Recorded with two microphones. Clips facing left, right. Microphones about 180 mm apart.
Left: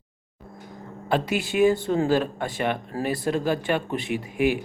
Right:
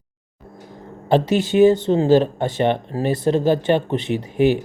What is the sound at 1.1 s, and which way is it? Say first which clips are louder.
Speech: right 7 dB; 25° right (ahead or behind).